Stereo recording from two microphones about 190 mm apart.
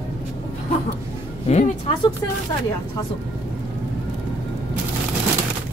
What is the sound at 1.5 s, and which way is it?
Speech, 35° left (ahead or behind).